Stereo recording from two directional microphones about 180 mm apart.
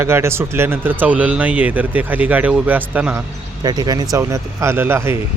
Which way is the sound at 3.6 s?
20° right (ahead or behind).